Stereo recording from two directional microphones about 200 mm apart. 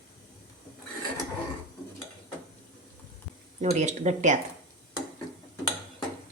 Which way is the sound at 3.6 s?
35° right (ahead or behind).